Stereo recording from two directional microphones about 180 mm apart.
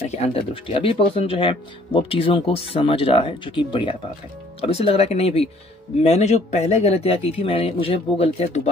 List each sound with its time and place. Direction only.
0.1 s speech: 30° left (ahead or behind)